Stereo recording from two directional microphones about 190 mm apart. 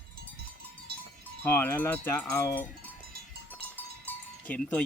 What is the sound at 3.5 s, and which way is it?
Sheep, 10° left (ahead or behind).